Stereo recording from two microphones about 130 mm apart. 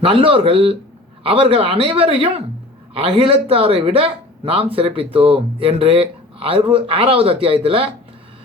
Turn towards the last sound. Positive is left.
turn(degrees=-45)  # may be behind; listen again after turning